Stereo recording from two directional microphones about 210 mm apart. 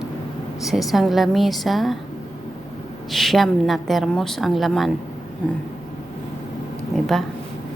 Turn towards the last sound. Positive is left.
turn(degrees=0)  # may be behind; listen again after turning